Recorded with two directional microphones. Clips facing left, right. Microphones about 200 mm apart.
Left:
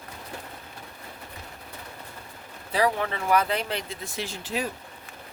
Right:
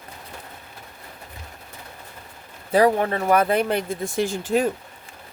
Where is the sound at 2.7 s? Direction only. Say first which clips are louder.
Right 7 dB; 50° right (ahead or behind).